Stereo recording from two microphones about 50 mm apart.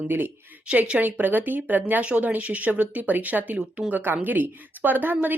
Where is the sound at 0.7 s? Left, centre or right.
Right.